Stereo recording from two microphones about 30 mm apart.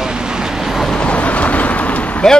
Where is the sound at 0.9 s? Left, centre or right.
Left.